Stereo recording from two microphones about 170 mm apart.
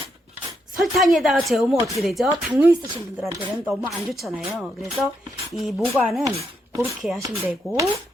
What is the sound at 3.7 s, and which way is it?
Speech, centre (ahead or behind).